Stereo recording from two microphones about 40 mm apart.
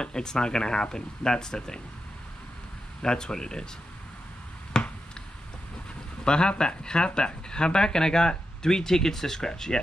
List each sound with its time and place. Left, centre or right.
0.0 s speech: centre
3.0 s speech: centre
4.7 s finger snapping: left
6.2 s speech: left